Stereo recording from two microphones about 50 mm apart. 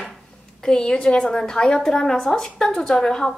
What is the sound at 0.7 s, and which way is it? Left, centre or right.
A woman's voice, centre.